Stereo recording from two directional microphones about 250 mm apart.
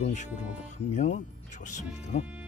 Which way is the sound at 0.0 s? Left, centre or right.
Left.